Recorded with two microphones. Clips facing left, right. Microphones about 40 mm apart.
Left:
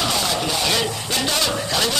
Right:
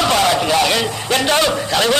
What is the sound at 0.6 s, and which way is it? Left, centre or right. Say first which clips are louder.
Speech: right 4 dB; right.